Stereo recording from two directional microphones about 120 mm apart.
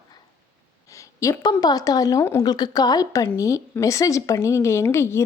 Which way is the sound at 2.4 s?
35° left (ahead or behind).